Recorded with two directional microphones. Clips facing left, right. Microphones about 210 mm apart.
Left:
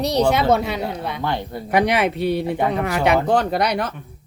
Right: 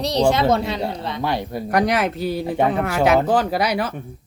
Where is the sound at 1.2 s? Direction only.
15° right (ahead or behind).